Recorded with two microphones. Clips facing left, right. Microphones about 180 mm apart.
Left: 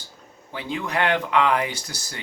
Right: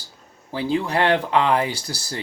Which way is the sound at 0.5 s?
30° right (ahead or behind).